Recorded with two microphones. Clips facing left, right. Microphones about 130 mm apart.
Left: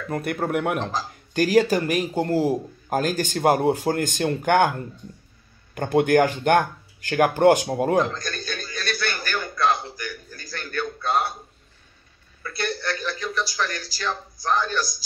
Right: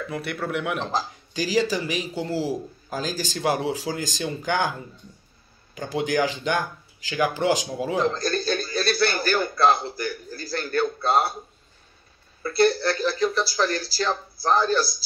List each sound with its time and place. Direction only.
0.1 s a man's voice: 45° left (ahead or behind)
8.0 s a sound: 35° right (ahead or behind)
12.4 s speech: 35° right (ahead or behind)